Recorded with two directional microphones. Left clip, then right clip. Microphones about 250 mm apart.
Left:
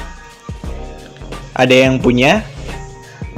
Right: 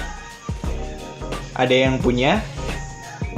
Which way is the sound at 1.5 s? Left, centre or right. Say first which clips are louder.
Left 7 dB; left.